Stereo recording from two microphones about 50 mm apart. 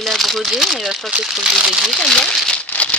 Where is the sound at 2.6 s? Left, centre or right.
Left.